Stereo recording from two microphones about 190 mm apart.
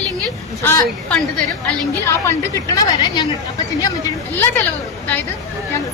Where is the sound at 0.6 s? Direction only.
10° left (ahead or behind).